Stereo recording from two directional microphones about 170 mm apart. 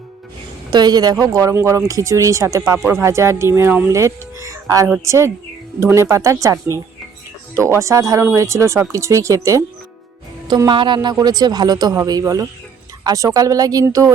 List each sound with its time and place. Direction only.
0.7 s a man's voice: 25° right (ahead or behind)